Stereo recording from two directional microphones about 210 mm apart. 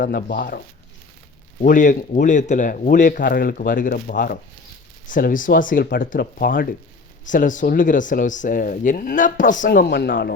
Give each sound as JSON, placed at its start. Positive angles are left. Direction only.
{"t": 0.0, "sound": "speech", "side_deg": 45}
{"t": 1.6, "sound": "speech", "side_deg": 40}